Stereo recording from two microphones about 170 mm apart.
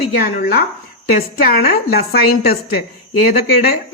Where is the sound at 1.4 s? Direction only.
65° left (ahead or behind).